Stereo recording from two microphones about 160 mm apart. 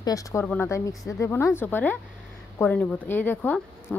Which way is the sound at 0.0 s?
20° left (ahead or behind).